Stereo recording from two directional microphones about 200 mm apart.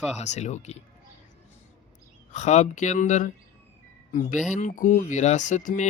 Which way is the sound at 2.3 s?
35° left (ahead or behind).